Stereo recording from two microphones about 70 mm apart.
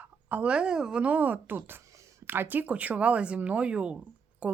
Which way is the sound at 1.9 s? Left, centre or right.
Right.